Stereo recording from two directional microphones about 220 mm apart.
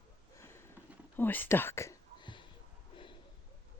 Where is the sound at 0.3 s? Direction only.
10° left (ahead or behind).